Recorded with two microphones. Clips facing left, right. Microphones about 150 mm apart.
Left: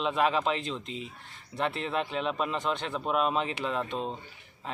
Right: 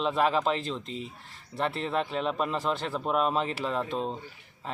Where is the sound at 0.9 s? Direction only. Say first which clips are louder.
Right 1 dB; 40° right (ahead or behind).